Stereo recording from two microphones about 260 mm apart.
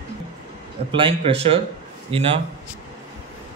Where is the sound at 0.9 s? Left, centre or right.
Right.